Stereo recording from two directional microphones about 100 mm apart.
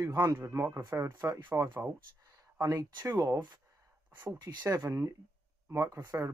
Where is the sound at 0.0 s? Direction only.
30° right (ahead or behind).